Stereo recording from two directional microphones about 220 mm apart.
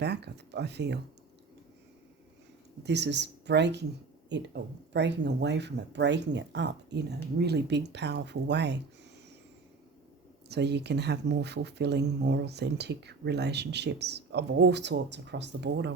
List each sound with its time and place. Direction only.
0.0 s speech: 50° right (ahead or behind)
2.8 s speech: 50° right (ahead or behind)
10.5 s speech: 50° right (ahead or behind)